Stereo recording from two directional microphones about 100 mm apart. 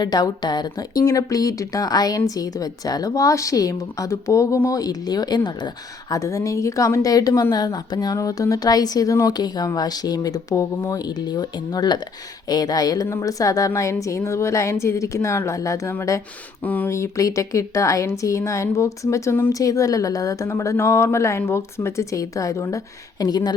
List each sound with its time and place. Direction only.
0.0 s a woman's voice: 40° left (ahead or behind)
16.6 s speech: 15° left (ahead or behind)
16.9 s a woman's voice: 30° left (ahead or behind)